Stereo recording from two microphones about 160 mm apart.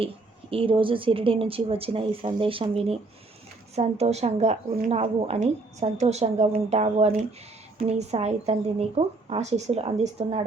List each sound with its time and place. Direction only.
0.5 s a woman's voice: 35° right (ahead or behind)